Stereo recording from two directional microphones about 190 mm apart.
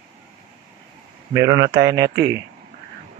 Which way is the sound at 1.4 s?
60° right (ahead or behind).